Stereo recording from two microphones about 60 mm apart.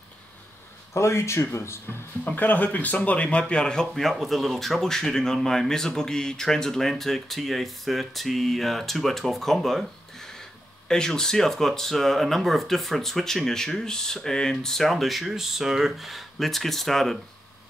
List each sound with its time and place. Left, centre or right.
0.9 s speech: left
2.2 s speech: left; by 3.8 s centre
3.9 s speech: centre